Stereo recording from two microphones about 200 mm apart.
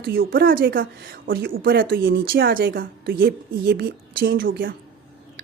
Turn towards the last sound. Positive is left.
turn(degrees=-45)  # may be behind; listen again after turning